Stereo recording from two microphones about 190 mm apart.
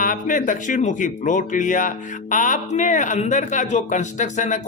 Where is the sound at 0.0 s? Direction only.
45° left (ahead or behind).